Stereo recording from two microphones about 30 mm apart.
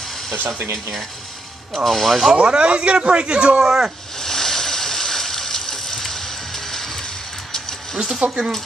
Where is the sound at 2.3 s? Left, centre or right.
Right.